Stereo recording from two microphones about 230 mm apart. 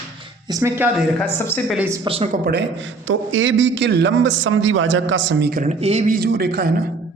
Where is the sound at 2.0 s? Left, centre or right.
Right.